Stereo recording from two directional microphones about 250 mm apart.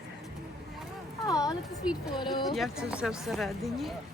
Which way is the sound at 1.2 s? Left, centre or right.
Centre.